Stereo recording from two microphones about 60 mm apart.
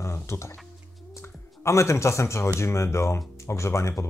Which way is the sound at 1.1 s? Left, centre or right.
Left.